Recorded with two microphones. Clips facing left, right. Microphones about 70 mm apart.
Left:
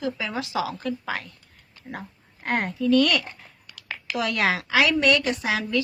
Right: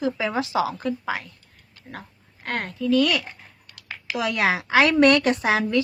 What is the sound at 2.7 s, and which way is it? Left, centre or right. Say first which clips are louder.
Speech: even; centre.